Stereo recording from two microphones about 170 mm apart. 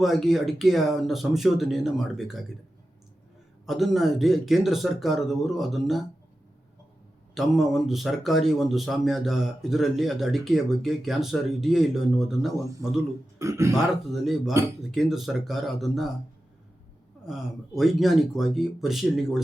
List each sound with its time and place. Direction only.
0.0 s a man's voice: centre (ahead or behind)
3.7 s a man's voice: centre (ahead or behind)
7.3 s a man's voice: centre (ahead or behind)
13.4 s a man's voice: 15° right (ahead or behind)
13.7 s a man's voice: centre (ahead or behind)
17.2 s a man's voice: centre (ahead or behind)